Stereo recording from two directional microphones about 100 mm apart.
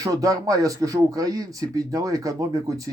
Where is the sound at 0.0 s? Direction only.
35° right (ahead or behind).